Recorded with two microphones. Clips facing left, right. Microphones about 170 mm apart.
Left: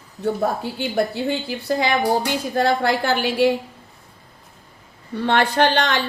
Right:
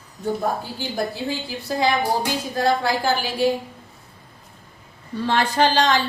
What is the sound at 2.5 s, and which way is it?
Speech, 60° left (ahead or behind).